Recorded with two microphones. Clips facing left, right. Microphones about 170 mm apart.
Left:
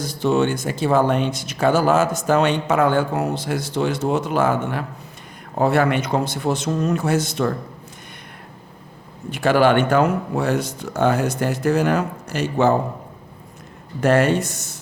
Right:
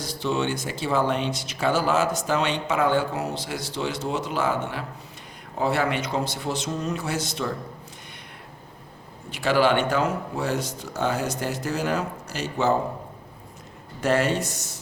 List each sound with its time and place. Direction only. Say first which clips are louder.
0.0 s speech: left 7 dB; 50° left (ahead or behind)
9.3 s speech: left 5 dB; 50° left (ahead or behind)
14.0 s speech: left 6 dB; 55° left (ahead or behind)